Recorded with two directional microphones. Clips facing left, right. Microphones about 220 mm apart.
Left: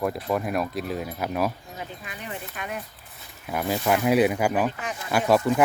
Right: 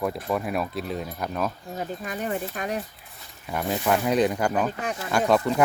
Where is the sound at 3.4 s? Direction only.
5° left (ahead or behind).